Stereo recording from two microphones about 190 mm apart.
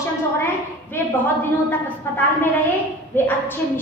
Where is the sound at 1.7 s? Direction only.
10° left (ahead or behind).